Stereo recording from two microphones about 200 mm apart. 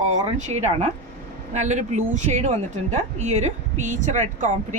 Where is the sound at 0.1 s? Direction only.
35° right (ahead or behind).